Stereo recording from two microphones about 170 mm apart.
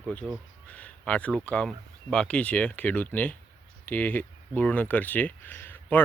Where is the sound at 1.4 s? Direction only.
5° left (ahead or behind).